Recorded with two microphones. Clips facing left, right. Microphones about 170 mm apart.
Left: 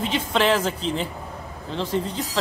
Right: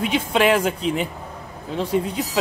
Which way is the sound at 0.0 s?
10° right (ahead or behind).